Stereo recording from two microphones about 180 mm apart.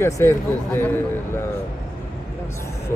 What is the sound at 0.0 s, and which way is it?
Speech, 15° left (ahead or behind).